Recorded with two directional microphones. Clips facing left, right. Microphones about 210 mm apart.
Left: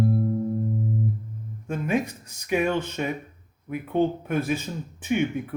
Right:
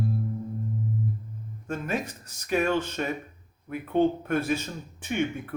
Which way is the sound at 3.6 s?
10° left (ahead or behind).